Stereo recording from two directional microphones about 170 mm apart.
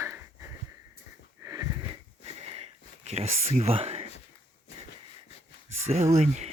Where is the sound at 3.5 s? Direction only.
35° right (ahead or behind).